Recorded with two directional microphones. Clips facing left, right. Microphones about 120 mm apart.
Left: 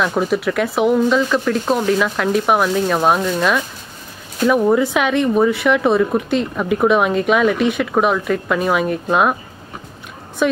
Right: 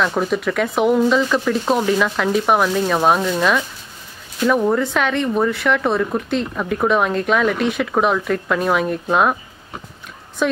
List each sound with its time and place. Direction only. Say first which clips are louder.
0.0 s speech: left 1 dB; 5° left (ahead or behind)
10.4 s speech: left 2 dB; 5° left (ahead or behind)